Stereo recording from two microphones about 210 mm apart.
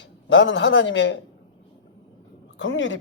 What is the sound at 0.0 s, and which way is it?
Speech, 60° left (ahead or behind).